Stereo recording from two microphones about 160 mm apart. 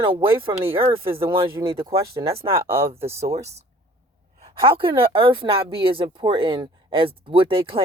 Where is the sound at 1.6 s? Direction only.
35° right (ahead or behind).